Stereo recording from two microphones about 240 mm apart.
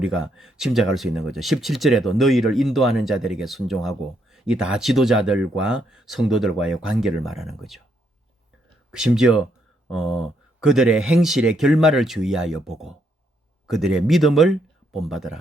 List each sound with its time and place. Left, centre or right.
0.0 s speech: centre
8.9 s speech: centre